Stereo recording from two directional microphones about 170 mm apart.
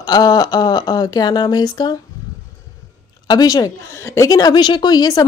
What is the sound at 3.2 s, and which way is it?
Speech, 25° left (ahead or behind).